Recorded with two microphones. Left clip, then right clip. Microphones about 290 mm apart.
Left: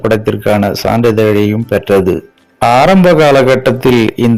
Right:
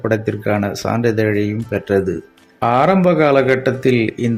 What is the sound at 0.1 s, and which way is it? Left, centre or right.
Speech, left.